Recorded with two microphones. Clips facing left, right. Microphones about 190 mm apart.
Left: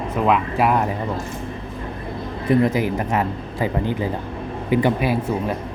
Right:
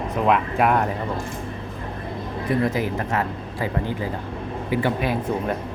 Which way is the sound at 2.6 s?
15° left (ahead or behind).